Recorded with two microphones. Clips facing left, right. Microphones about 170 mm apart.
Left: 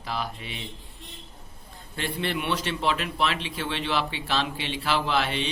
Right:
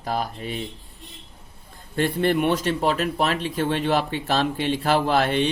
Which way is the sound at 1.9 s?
45° right (ahead or behind).